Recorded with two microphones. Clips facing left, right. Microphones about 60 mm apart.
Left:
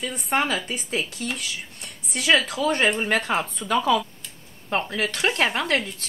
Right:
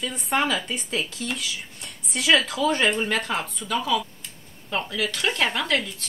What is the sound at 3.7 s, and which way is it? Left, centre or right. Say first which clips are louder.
A woman's voice: left 4 dB; left.